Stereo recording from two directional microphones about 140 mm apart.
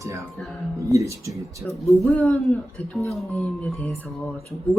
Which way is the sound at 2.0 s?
10° left (ahead or behind).